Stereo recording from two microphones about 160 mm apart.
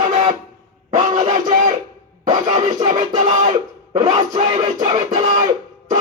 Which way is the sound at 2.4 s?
50° right (ahead or behind).